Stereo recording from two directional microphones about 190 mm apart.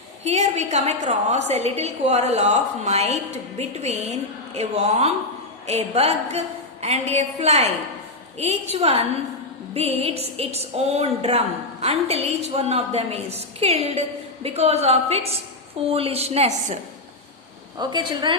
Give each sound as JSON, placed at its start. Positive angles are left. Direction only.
{"t": 0.3, "sound": "a woman's voice", "side_deg": -35}
{"t": 17.7, "sound": "a woman's voice", "side_deg": -25}